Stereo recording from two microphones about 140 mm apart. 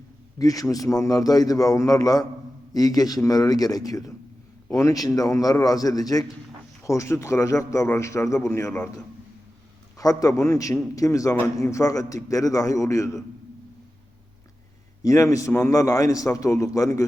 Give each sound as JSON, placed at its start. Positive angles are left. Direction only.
{"t": 0.3, "sound": "a man's voice", "side_deg": 25}
{"t": 10.0, "sound": "a man's voice", "side_deg": 25}
{"t": 15.0, "sound": "a man's voice", "side_deg": 25}